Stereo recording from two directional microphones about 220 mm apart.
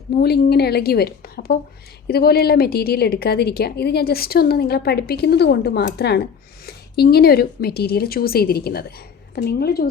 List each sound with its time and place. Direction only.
0.1 s a woman's voice: 45° left (ahead or behind)